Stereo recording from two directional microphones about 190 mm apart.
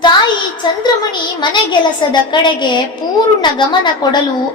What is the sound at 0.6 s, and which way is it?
A woman's voice, 25° left (ahead or behind).